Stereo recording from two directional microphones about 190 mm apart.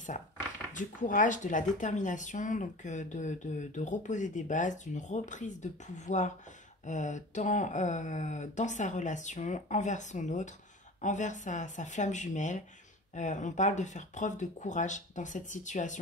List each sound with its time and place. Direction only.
0.7 s speech: 45° left (ahead or behind)